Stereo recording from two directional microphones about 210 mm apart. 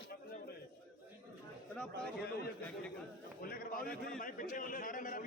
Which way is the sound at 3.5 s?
45° left (ahead or behind).